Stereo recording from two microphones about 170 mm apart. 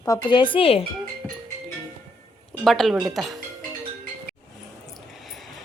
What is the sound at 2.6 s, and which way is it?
Speech, centre (ahead or behind).